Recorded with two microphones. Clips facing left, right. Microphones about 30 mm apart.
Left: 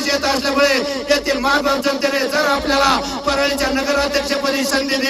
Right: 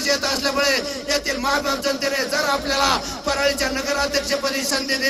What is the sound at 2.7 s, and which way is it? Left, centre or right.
Speech, centre.